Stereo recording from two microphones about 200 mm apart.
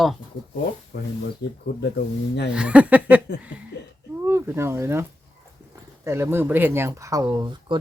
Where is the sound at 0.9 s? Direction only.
55° left (ahead or behind).